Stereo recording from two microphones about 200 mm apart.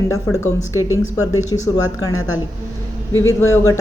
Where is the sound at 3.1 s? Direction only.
80° left.